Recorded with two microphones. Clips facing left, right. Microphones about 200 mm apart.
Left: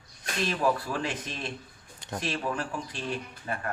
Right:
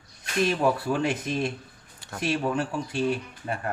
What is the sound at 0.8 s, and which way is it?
Speech, 25° right (ahead or behind).